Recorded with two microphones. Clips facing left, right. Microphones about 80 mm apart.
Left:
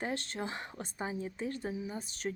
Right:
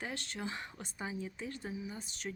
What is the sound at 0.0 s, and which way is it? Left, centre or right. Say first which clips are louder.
A woman's voice: left 4 dB; left.